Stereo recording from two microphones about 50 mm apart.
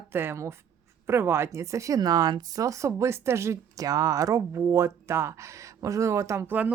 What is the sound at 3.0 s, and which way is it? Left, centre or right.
Speech, right.